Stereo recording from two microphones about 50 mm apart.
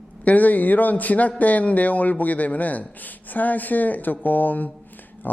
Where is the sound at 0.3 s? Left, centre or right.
Left.